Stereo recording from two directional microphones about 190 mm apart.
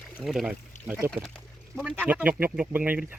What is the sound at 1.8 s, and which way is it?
Speech, 10° right (ahead or behind).